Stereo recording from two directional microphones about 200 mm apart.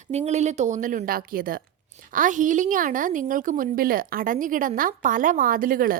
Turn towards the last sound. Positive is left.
turn(degrees=-45)  # may be behind; listen again after turning